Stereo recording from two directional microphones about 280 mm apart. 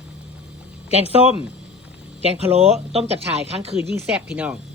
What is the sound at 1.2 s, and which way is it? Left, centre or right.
Speech, left.